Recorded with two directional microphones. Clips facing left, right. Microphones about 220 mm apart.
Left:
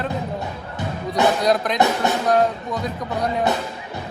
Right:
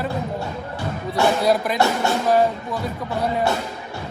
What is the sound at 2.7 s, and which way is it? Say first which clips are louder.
Speech: even; 20° left (ahead or behind).